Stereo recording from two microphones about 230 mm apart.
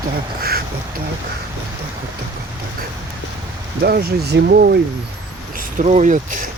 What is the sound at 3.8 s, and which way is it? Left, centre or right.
Speech, right.